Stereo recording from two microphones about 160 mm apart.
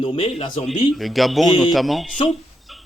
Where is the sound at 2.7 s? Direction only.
Centre (ahead or behind).